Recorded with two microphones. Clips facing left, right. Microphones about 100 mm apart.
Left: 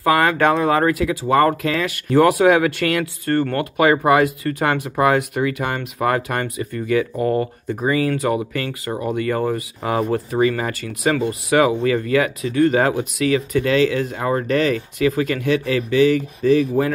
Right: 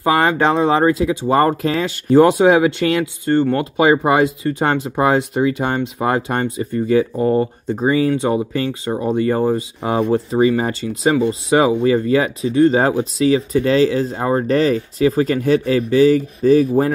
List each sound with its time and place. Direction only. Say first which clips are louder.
0.0 s speech: right 1 dB; 25° right (ahead or behind)